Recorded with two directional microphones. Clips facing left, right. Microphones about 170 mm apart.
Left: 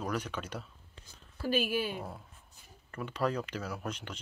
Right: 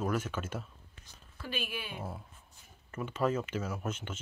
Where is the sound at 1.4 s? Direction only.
40° left (ahead or behind).